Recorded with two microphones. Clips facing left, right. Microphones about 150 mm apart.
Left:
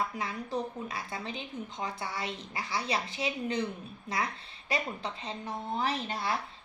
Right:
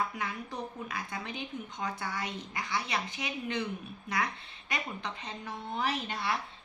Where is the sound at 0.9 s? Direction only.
30° left (ahead or behind).